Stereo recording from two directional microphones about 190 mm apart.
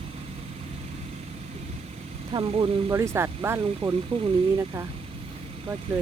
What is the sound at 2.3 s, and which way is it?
Speech, 25° right (ahead or behind).